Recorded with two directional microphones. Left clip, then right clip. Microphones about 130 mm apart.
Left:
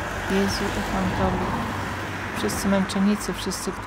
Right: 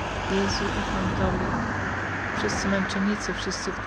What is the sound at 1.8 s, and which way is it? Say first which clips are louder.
Speech: right 1 dB; 50° left (ahead or behind).